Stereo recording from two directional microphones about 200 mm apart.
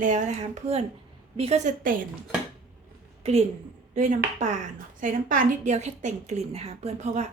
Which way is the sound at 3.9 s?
40° right (ahead or behind).